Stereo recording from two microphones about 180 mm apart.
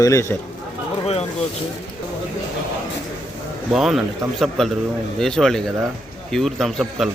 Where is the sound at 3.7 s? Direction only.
Centre (ahead or behind).